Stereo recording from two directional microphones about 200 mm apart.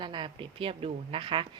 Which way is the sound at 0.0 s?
25° right (ahead or behind).